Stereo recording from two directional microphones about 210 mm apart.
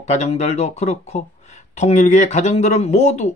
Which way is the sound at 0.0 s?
30° left (ahead or behind).